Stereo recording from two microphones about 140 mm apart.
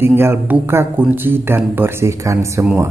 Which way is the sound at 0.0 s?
15° right (ahead or behind).